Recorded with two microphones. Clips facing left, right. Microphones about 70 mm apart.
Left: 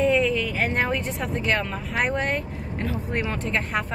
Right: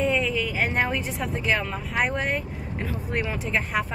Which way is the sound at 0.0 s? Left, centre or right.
Centre.